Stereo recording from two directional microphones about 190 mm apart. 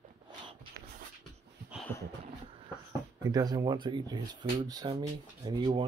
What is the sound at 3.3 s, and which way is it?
Speech, 20° right (ahead or behind).